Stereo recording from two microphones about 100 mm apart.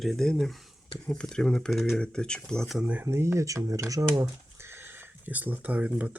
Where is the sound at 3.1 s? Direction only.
25° right (ahead or behind).